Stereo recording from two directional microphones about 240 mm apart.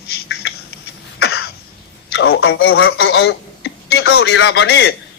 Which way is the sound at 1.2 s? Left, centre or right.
Left.